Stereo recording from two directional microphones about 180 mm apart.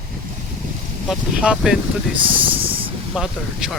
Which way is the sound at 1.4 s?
5° right (ahead or behind).